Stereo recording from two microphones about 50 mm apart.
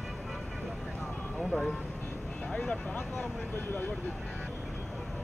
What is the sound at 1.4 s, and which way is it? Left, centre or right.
Speech, centre.